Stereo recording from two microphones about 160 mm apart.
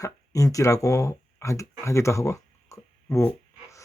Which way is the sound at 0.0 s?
20° left (ahead or behind).